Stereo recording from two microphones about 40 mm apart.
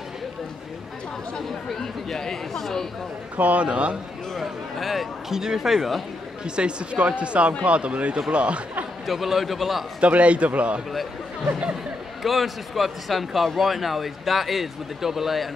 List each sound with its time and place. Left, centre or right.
1.3 s speech: centre
3.3 s a man's voice: right
3.6 s speech: right
4.4 s a sound: centre
5.3 s speech: centre
6.4 s a man's voice: right
9.0 s a man's voice: centre
9.9 s a man's voice: right
12.2 s a man's voice: centre